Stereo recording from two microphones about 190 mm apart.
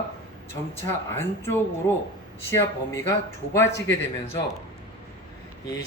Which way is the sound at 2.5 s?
15° left (ahead or behind).